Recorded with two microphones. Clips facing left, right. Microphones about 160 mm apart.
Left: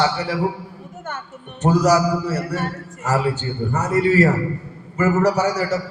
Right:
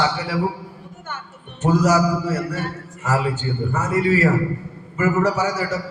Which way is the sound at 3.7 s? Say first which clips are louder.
Left 3 dB; 40° left (ahead or behind).